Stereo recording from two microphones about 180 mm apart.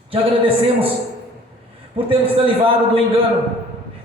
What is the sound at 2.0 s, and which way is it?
Speech, 30° right (ahead or behind).